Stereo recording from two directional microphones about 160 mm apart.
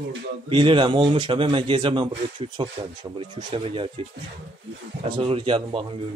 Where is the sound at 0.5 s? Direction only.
30° right (ahead or behind).